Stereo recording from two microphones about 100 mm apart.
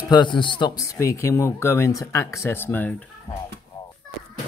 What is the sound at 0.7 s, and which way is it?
Speech, 30° left (ahead or behind).